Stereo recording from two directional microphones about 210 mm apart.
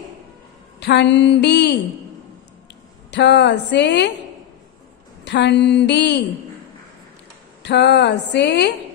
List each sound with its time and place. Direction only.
0.7 s speech: 55° left (ahead or behind)
3.1 s speech: 55° left (ahead or behind)
5.2 s speech: 55° left (ahead or behind)
7.6 s speech: 55° left (ahead or behind)